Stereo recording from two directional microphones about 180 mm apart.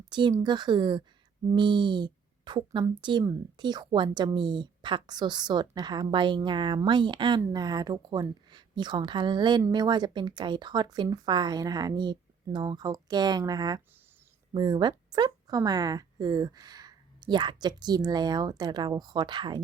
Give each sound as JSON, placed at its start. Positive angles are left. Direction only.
{"t": 0.1, "sound": "a woman's voice", "side_deg": -25}